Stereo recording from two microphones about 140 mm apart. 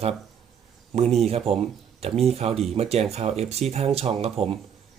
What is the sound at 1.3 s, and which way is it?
Speech, 45° right (ahead or behind).